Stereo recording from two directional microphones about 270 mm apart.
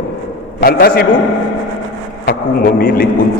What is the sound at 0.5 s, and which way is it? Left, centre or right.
Speech, left.